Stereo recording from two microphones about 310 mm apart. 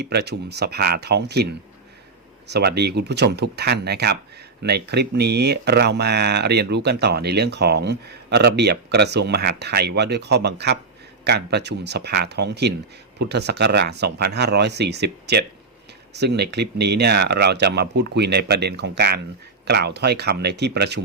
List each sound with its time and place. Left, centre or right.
0.0 s speech: right